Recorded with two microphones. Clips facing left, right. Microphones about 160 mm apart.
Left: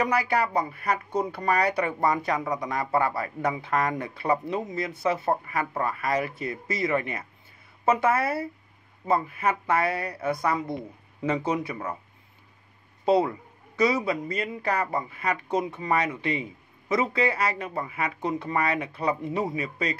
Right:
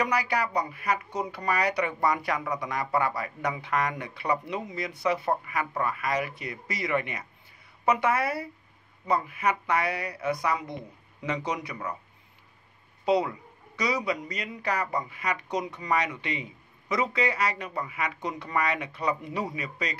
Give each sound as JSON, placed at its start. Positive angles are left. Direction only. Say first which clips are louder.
{"t": 0.0, "sound": "speech", "louder": "left 3 dB", "side_deg": 25}
{"t": 1.3, "sound": "speech", "louder": "left 2 dB", "side_deg": 55}
{"t": 1.6, "sound": "speech", "louder": "even", "side_deg": 30}
{"t": 11.4, "sound": "speech", "louder": "left 4 dB", "side_deg": 25}
{"t": 13.0, "sound": "speech", "louder": "left 3 dB", "side_deg": 30}